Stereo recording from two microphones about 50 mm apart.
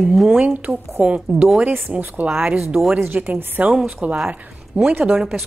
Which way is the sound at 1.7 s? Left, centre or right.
Right.